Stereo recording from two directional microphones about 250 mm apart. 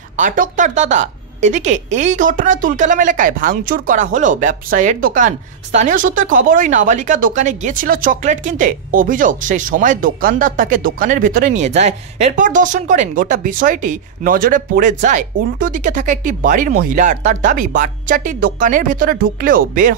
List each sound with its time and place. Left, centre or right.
0.2 s a woman's voice: right